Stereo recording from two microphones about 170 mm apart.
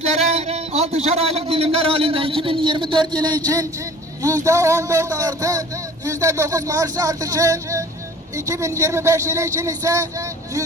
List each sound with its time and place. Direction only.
0.0 s a man's voice: 40° right (ahead or behind); by 10.6 s 20° right (ahead or behind)